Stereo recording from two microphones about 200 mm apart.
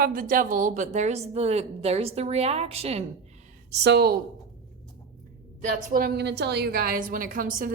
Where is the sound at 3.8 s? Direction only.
55° right (ahead or behind).